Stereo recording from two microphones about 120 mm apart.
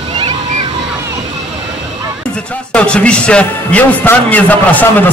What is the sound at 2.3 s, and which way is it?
Speech, 10° left (ahead or behind).